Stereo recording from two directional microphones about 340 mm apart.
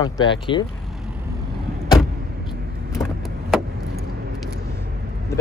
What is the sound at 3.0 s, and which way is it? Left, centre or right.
Vehicle, centre.